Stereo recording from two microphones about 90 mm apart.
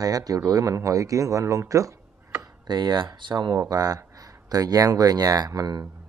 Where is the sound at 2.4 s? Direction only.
55° right (ahead or behind).